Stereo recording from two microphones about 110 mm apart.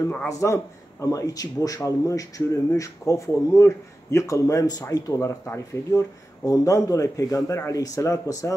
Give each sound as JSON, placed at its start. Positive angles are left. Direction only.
{"t": 0.4, "sound": "a man's voice", "side_deg": 25}